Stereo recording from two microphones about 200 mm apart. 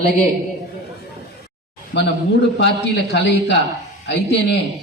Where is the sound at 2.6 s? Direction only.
60° left (ahead or behind).